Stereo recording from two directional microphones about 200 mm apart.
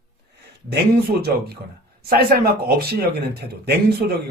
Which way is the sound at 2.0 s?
50° right (ahead or behind).